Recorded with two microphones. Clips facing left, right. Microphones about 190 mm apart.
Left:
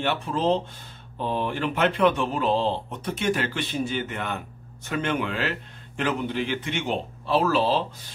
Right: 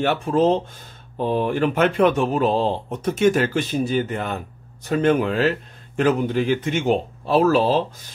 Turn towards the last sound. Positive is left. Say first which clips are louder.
# right 5 dB
turn(degrees=-45)  # may be behind; listen again after turning